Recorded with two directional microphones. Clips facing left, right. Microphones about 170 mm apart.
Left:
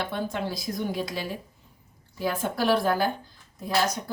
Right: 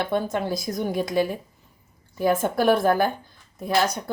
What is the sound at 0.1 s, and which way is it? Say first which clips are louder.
A woman's voice: right 6 dB; 50° right (ahead or behind).